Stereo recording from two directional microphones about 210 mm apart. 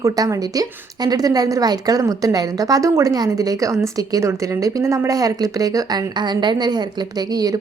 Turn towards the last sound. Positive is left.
turn(degrees=-20)  # may be behind; listen again after turning